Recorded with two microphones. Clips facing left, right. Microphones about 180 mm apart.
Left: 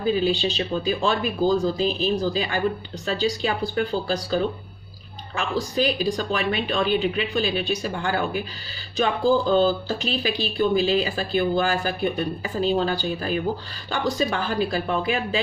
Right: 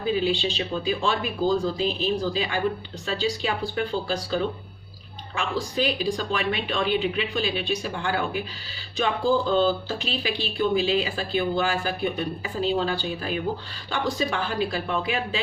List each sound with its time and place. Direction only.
0.0 s speech: 40° left (ahead or behind)
9.5 s speech: 40° left (ahead or behind)